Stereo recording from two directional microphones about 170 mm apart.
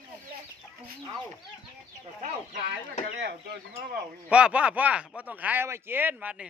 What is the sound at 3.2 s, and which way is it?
Speech, 70° right (ahead or behind).